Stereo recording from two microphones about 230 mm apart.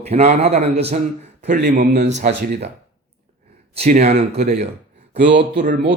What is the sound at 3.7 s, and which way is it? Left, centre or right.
Speech, right.